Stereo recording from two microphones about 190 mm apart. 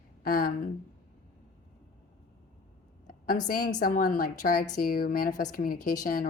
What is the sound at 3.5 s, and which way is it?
A woman's voice, 50° left (ahead or behind).